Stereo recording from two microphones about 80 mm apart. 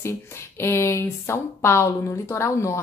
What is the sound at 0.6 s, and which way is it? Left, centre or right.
Speech, left.